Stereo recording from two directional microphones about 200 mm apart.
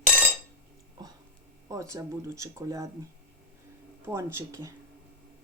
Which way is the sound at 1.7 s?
15° right (ahead or behind).